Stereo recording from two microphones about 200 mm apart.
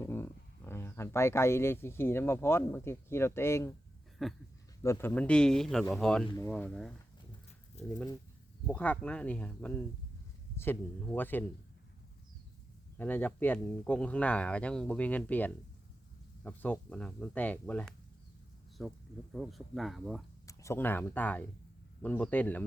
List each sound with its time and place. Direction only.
0.0 s speech: 10° left (ahead or behind)
4.2 s a man's voice: centre (ahead or behind)
4.8 s a man's voice: 15° left (ahead or behind)
6.2 s speech: 15° left (ahead or behind)
6.5 s a man's voice: 5° left (ahead or behind)
7.8 s speech: 35° left (ahead or behind)
8.6 s speech: 5° left (ahead or behind)
13.0 s a man's voice: 10° left (ahead or behind)
20.5 s speech: 15° left (ahead or behind)